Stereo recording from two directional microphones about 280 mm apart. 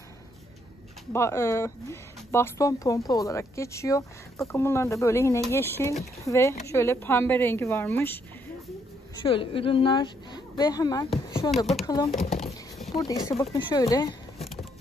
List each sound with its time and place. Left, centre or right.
1.1 s a woman's voice: centre
9.2 s a woman's voice: centre
11.5 s speech: centre
11.8 s a woman's voice: centre
12.1 s speech: centre
12.9 s a woman's voice: centre
14.4 s vehicle: centre